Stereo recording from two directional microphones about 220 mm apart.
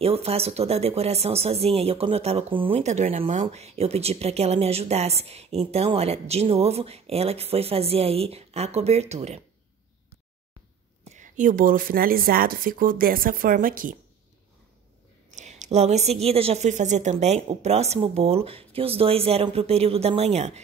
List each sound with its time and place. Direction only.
0.0 s speech: 25° right (ahead or behind)
11.1 s a woman's voice: 35° right (ahead or behind)
15.3 s speech: 30° right (ahead or behind)